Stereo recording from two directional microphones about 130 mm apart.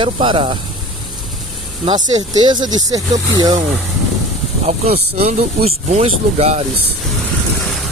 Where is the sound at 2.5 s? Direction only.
30° right (ahead or behind).